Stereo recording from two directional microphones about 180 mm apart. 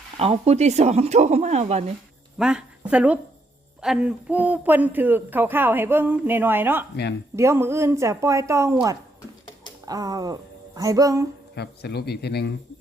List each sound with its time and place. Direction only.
0.2 s speech: 35° right (ahead or behind)
2.4 s a woman's voice: 5° right (ahead or behind)
11.5 s speech: 65° left (ahead or behind)